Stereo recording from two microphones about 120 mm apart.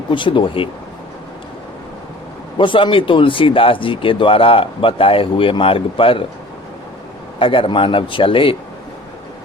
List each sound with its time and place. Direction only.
0.1 s speech: 45° left (ahead or behind)
2.6 s speech: 45° left (ahead or behind)
7.3 s speech: 45° left (ahead or behind)